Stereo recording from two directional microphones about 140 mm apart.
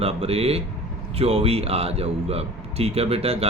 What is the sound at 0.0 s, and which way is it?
Speech, 45° right (ahead or behind).